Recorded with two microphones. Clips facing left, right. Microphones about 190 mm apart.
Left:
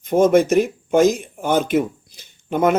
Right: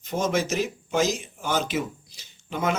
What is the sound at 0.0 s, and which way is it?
Speech, 55° left (ahead or behind).